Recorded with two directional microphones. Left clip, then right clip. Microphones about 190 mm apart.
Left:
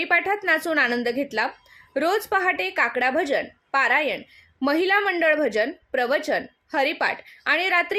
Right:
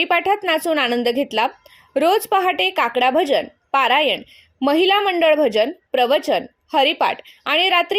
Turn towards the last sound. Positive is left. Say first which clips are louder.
# right 4 dB
turn(degrees=-25)  # may be behind; listen again after turning